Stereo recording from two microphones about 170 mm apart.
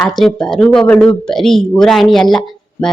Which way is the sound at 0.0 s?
Centre (ahead or behind).